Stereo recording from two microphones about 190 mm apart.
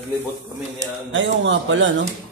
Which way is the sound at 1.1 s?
80° right.